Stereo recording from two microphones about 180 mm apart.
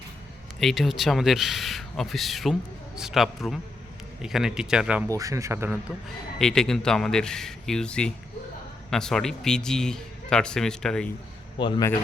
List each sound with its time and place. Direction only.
0.6 s a man's voice: centre (ahead or behind)
5.0 s a man's voice: 20° right (ahead or behind)
6.4 s a man's voice: 5° left (ahead or behind)
11.5 s a man's voice: 25° left (ahead or behind)